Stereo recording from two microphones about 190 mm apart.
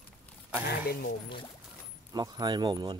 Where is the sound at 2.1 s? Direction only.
20° right (ahead or behind).